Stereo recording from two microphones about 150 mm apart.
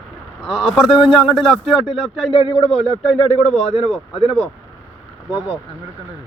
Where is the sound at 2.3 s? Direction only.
40° left (ahead or behind).